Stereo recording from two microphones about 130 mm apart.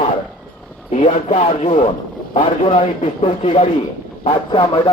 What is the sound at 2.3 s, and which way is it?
A man's voice, 50° left (ahead or behind).